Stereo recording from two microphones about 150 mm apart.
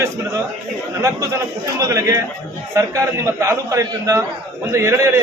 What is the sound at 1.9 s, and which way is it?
A man's voice, 20° right (ahead or behind).